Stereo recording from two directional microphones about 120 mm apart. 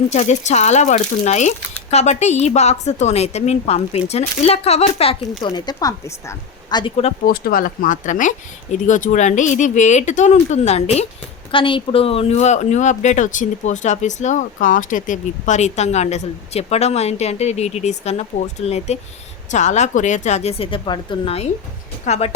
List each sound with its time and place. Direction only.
0.1 s speech: 70° left (ahead or behind)
5.4 s speech: 35° left (ahead or behind)
7.9 s speech: 90° left; by 11.0 s 65° left (ahead or behind)
11.5 s speech: 45° left (ahead or behind); by 18.9 s 65° left (ahead or behind)
19.5 s speech: 80° left; by 21.3 s 40° left (ahead or behind)
22.0 s speech: 70° left (ahead or behind)